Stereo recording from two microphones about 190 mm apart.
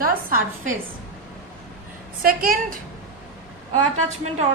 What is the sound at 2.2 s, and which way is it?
Speech, 50° right (ahead or behind).